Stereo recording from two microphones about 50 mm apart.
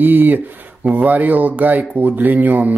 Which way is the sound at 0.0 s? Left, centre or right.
Right.